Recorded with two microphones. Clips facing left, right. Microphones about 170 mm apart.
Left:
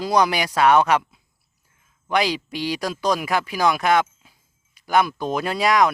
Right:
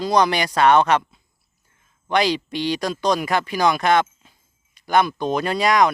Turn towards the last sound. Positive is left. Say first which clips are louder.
# right 1 dB
turn(degrees=5)  # may be behind; listen again after turning